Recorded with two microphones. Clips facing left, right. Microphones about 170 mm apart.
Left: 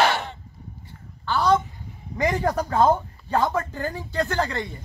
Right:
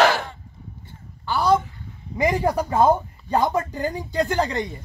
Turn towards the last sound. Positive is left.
turn(degrees=-20)  # may be behind; listen again after turning